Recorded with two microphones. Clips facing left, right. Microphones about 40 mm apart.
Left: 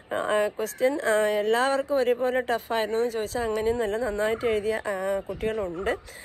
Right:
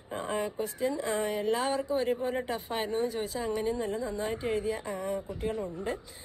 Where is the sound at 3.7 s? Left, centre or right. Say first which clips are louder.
Left 6 dB; left.